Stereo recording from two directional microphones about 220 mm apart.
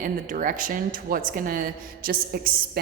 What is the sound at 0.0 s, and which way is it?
A woman's voice, 40° right (ahead or behind).